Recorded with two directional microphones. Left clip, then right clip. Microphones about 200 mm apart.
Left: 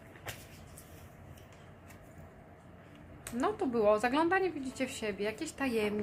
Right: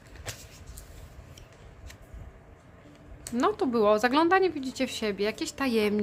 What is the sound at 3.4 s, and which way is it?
Speech, 35° right (ahead or behind).